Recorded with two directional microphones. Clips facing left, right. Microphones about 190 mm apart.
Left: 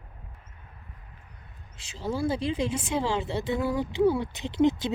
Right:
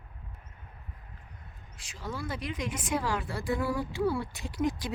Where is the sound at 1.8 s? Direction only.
25° left (ahead or behind).